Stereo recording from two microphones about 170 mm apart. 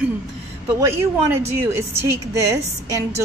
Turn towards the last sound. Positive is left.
turn(degrees=-15)  # may be behind; listen again after turning